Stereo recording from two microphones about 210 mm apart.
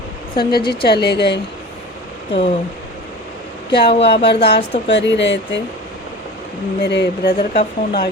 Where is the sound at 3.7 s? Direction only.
50° left (ahead or behind).